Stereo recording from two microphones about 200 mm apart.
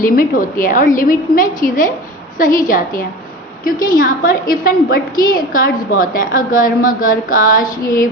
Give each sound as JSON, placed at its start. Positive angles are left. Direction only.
{"t": 0.0, "sound": "a woman's voice", "side_deg": 45}